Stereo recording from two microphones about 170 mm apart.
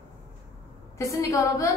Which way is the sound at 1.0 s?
20° left (ahead or behind).